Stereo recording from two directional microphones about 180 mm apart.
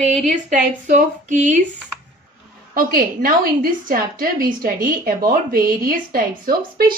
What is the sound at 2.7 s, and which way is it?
A woman's voice, 55° right (ahead or behind).